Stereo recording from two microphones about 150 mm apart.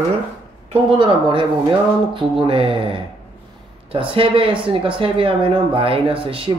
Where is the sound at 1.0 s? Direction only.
35° right (ahead or behind).